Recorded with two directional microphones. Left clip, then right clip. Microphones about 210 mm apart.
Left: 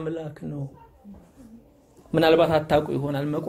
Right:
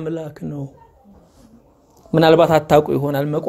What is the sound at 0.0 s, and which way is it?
Speech, 35° right (ahead or behind).